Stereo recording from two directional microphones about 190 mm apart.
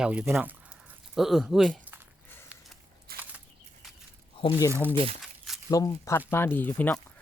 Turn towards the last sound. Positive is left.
turn(degrees=10)  # may be behind; listen again after turning